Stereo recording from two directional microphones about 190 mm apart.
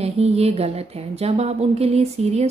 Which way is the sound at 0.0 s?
30° right (ahead or behind).